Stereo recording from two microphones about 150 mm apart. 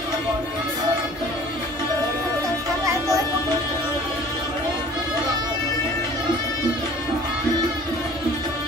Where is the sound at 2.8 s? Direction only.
20° right (ahead or behind).